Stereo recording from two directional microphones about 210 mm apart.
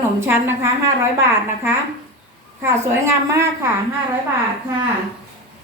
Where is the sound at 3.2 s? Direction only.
10° right (ahead or behind).